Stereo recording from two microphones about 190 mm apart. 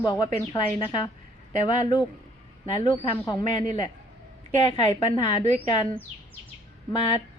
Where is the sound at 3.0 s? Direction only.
25° left (ahead or behind).